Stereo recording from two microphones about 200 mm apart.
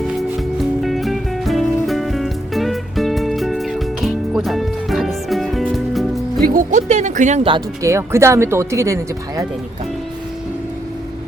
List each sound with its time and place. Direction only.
0.1 s music: centre (ahead or behind)
6.4 s music: 45° right (ahead or behind)
7.5 s speech: 15° right (ahead or behind)